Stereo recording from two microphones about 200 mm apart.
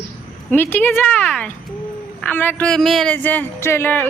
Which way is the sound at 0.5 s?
10° left (ahead or behind).